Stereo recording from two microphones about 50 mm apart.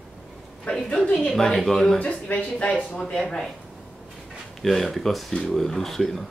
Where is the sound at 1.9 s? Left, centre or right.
Left.